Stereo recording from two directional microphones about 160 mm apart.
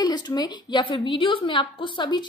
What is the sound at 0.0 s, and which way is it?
A woman's voice, 25° left (ahead or behind).